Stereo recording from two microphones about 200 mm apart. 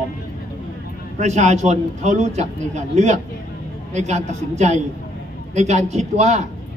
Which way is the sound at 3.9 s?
35° right (ahead or behind).